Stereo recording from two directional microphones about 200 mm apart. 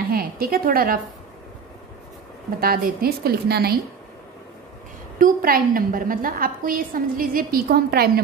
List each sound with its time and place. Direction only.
0.1 s a woman's voice: 50° right (ahead or behind)
2.6 s a woman's voice: 45° right (ahead or behind)
5.2 s a woman's voice: 45° right (ahead or behind)